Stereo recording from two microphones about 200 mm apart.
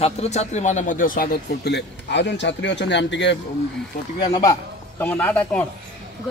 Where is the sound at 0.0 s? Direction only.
35° left (ahead or behind); by 3.3 s 60° left (ahead or behind).